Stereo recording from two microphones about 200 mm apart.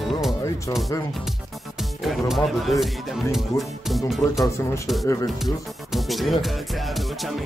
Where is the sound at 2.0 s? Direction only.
Centre (ahead or behind).